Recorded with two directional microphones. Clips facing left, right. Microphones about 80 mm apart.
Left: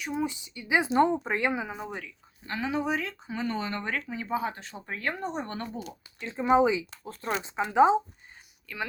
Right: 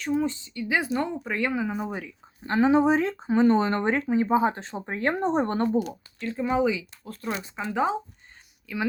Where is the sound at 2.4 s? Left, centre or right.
Right.